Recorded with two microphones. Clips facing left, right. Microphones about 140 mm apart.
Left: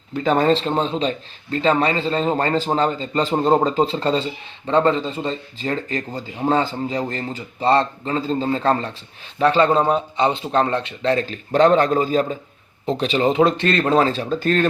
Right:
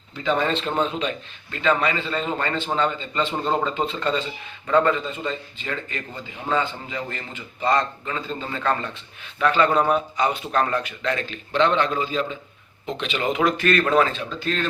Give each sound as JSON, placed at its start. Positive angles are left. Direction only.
{"t": 0.1, "sound": "speech", "side_deg": 45}